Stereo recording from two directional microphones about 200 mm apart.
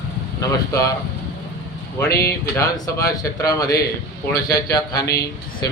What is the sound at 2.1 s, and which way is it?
A man's voice, 15° left (ahead or behind).